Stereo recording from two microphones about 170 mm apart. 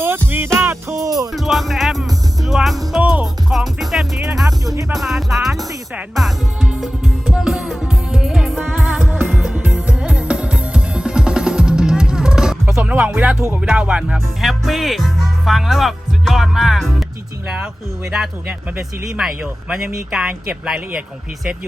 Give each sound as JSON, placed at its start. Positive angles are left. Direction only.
{"t": 0.3, "sound": "music", "side_deg": -15}
{"t": 1.3, "sound": "speech", "side_deg": 0}
{"t": 4.6, "sound": "speech", "side_deg": -20}
{"t": 4.9, "sound": "speech", "side_deg": 0}
{"t": 6.1, "sound": "music", "side_deg": 0}
{"t": 18.1, "sound": "speech", "side_deg": -5}